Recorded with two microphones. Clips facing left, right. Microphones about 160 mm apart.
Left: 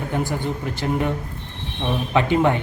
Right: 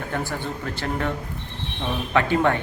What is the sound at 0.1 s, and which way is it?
Speech, 15° left (ahead or behind).